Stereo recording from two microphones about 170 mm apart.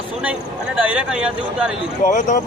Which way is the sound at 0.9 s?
5° right (ahead or behind).